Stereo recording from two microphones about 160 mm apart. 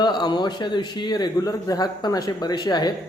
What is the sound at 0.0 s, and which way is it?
A man's voice, 25° left (ahead or behind).